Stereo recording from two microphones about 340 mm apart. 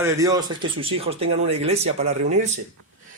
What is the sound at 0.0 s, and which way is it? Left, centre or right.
Speech, centre.